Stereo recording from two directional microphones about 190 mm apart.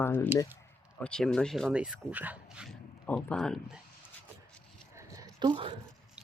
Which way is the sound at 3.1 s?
5° left (ahead or behind).